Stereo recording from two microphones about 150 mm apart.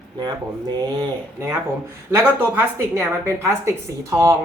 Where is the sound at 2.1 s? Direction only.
15° right (ahead or behind).